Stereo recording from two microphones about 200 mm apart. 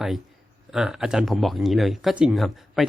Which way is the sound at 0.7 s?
5° right (ahead or behind).